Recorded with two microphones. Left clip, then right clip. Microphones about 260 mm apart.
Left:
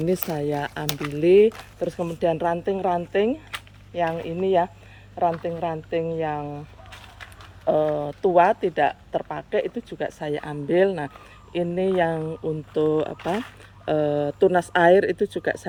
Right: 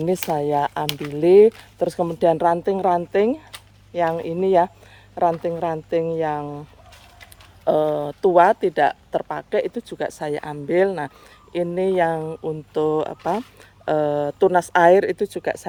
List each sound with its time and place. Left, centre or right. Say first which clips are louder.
0.3 s speech: right 6 dB; centre
4.2 s speech: right 3 dB; right
5.5 s speech: right 4 dB; right
7.6 s speech: right 2 dB; right